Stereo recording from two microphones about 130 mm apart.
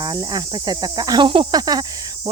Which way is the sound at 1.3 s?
40° right (ahead or behind).